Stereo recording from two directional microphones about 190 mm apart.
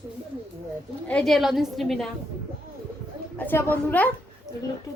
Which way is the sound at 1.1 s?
5° left (ahead or behind).